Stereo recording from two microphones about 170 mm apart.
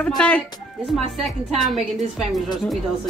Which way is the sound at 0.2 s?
5° left (ahead or behind).